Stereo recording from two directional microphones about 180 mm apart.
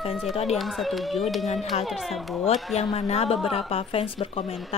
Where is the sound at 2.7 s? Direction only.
35° left (ahead or behind).